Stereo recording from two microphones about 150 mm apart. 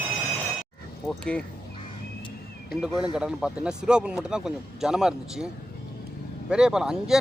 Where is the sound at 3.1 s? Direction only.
5° right (ahead or behind).